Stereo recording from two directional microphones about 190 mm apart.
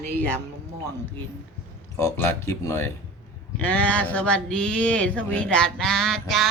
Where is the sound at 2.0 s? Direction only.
15° left (ahead or behind).